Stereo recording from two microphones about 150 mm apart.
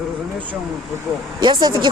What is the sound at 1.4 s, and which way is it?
Speech, 30° right (ahead or behind).